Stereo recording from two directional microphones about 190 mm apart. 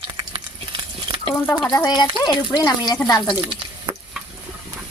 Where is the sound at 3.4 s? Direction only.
25° right (ahead or behind).